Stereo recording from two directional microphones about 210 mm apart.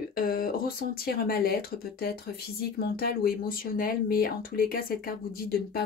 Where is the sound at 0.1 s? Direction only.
45° left (ahead or behind).